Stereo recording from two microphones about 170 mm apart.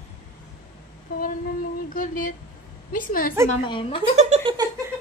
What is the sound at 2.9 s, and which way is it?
Speech, 55° left (ahead or behind).